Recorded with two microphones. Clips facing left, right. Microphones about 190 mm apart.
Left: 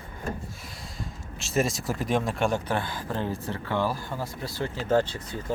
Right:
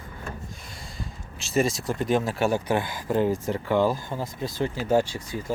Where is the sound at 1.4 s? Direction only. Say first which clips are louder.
Right 2 dB; centre (ahead or behind).